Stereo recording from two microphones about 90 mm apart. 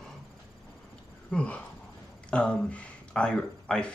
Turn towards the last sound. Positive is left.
turn(degrees=10)  # may be behind; listen again after turning